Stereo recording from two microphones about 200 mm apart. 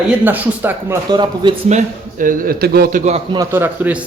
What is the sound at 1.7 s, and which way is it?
A man's voice, 40° right (ahead or behind).